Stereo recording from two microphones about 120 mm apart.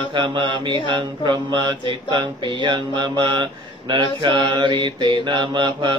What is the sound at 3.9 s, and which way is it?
Mantra, 40° right (ahead or behind).